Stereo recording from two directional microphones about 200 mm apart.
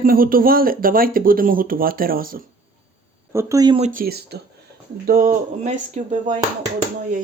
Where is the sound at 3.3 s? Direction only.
15° right (ahead or behind).